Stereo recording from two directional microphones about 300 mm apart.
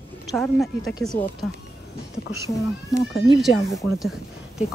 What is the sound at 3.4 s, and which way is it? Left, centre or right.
A woman's voice, centre.